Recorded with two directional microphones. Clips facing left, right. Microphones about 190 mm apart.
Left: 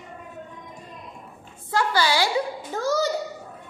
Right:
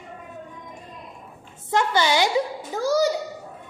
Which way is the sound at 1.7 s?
20° right (ahead or behind).